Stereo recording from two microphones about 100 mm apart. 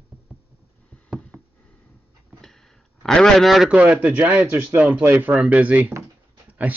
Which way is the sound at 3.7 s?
15° right (ahead or behind).